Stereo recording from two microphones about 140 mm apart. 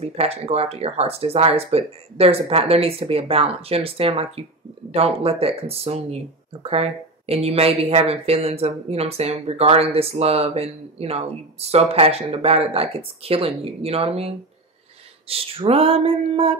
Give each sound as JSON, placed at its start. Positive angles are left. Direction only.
{"t": 0.0, "sound": "speech", "side_deg": -45}